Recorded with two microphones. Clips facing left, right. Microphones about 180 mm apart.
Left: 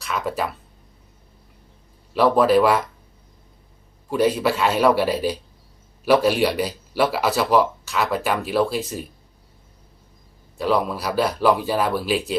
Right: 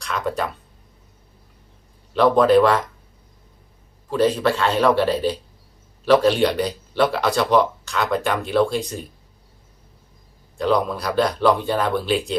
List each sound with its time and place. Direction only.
0.0 s speech: 5° left (ahead or behind)
2.1 s speech: 5° left (ahead or behind)
4.1 s speech: 10° left (ahead or behind)
10.6 s speech: 5° left (ahead or behind)